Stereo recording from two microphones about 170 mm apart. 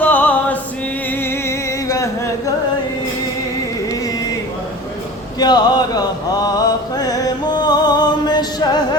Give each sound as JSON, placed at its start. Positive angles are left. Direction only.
{"t": 0.0, "sound": "music", "side_deg": 10}
{"t": 5.4, "sound": "mantra", "side_deg": 25}